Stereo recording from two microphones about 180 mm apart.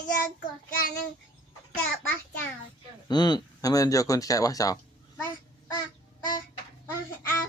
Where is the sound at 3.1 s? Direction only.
25° left (ahead or behind).